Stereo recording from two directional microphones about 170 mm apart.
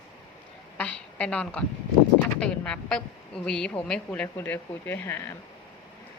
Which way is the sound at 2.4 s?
5° left (ahead or behind).